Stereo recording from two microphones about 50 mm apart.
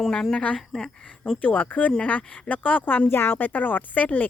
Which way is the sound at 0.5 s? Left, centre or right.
Centre.